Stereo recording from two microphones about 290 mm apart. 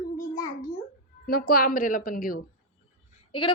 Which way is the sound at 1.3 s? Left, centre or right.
Left.